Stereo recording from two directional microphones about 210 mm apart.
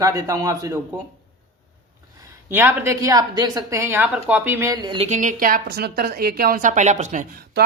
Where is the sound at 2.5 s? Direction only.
10° right (ahead or behind).